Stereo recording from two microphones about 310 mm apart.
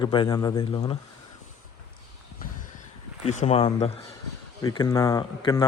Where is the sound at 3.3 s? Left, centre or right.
Left.